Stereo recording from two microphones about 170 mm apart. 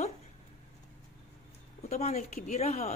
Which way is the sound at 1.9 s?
40° left (ahead or behind).